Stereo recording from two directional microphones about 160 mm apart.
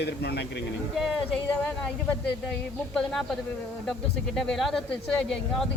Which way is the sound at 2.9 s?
Centre (ahead or behind).